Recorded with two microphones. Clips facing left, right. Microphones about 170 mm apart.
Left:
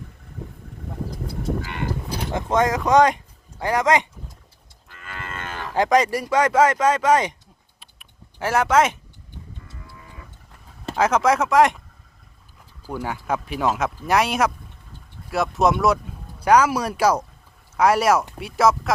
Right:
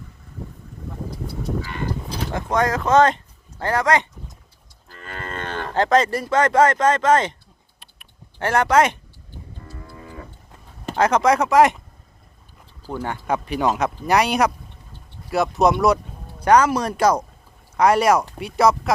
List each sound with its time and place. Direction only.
2.3 s speech: 20° left (ahead or behind)
4.9 s livestock: 35° right (ahead or behind)
5.7 s speech: 15° left (ahead or behind)
7.8 s typing: centre (ahead or behind)
9.7 s cattle: 50° right (ahead or behind)
10.9 s speech: 5° left (ahead or behind)
12.8 s speech: 10° left (ahead or behind)